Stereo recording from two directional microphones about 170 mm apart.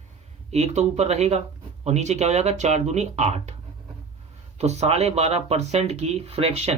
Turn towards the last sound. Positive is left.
turn(degrees=-40)  # may be behind; listen again after turning